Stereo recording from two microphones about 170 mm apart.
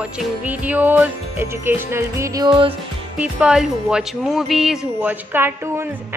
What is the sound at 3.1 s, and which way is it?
Speech, 5° right (ahead or behind).